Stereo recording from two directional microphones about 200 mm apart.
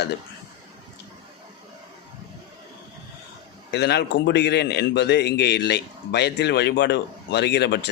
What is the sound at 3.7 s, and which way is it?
A man's voice, 55° left (ahead or behind).